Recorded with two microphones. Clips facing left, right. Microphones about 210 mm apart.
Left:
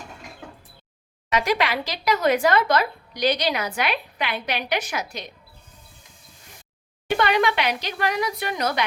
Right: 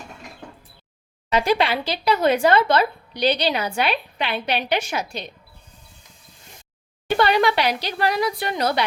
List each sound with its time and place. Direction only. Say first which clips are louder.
1.3 s speech: right 3 dB; 30° right (ahead or behind)
7.2 s a woman's voice: right 3 dB; 35° right (ahead or behind)